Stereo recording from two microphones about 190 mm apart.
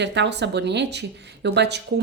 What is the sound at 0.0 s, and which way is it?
Speech, 65° right (ahead or behind).